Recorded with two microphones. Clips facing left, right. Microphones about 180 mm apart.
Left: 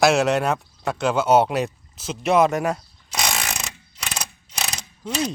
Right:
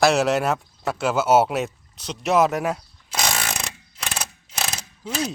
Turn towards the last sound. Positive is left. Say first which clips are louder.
# left 2 dB
turn(degrees=-5)  # may be behind; listen again after turning